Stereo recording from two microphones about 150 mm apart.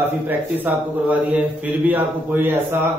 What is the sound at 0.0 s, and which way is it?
A man's voice, 10° right (ahead or behind).